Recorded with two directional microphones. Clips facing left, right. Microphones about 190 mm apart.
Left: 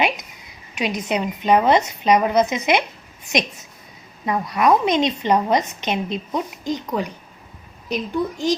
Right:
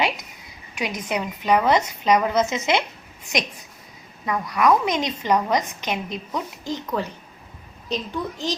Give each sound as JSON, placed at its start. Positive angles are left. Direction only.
{"t": 0.8, "sound": "a woman's voice", "side_deg": 20}